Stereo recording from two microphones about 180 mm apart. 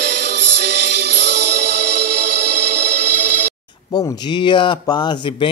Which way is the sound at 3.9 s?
20° left (ahead or behind).